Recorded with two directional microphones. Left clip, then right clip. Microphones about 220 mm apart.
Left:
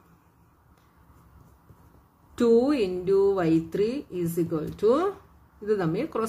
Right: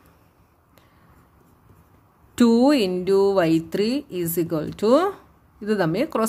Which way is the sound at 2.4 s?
45° right (ahead or behind).